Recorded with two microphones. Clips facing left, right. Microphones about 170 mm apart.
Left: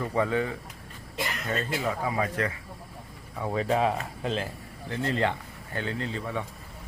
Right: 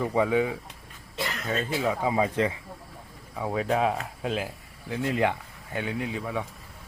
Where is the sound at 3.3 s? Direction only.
5° right (ahead or behind).